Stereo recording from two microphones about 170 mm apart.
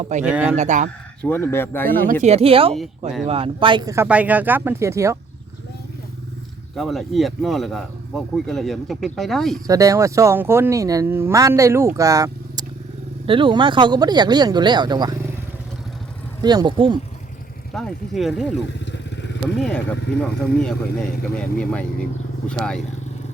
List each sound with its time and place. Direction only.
0.0 s speech: 45° right (ahead or behind)
0.3 s speech: 5° right (ahead or behind)
0.5 s speech: 45° right (ahead or behind)
1.2 s speech: 15° left (ahead or behind)
1.9 s speech: 55° right (ahead or behind)
2.2 s speech: 35° right (ahead or behind); by 5.1 s 15° right (ahead or behind)
6.7 s speech: centre (ahead or behind)
9.6 s speech: 20° right (ahead or behind)
13.2 s speech: 30° right (ahead or behind)
16.4 s speech: 25° right (ahead or behind)
17.7 s speech: centre (ahead or behind)
18.9 s vehicle: 90° left
19.5 s speech: 5° left (ahead or behind)